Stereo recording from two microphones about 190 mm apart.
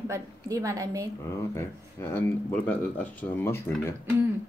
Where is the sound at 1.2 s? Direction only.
15° left (ahead or behind).